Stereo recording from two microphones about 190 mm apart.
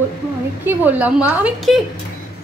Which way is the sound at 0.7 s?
10° right (ahead or behind).